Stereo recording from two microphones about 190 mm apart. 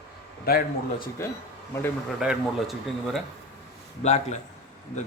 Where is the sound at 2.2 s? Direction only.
5° right (ahead or behind).